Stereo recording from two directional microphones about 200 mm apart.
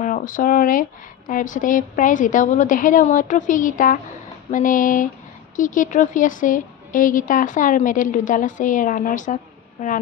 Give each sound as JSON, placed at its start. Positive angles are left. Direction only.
{"t": 0.0, "sound": "a woman's voice", "side_deg": 40}